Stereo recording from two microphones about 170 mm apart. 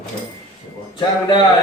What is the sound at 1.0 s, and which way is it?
Speech, 25° left (ahead or behind).